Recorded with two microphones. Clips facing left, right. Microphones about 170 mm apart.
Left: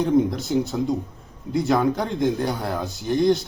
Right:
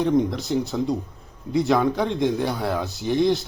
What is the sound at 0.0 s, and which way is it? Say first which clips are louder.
Speech: left 1 dB; centre (ahead or behind).